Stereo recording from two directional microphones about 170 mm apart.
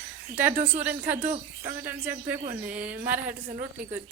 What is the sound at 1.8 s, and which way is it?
Speech, 10° right (ahead or behind).